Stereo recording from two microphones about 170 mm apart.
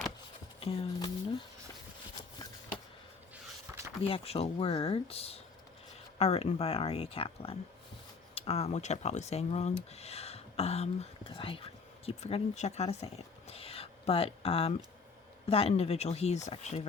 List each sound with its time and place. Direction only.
0.6 s speech: 30° left (ahead or behind)
3.7 s a sound: 15° right (ahead or behind)
4.0 s speech: 35° left (ahead or behind)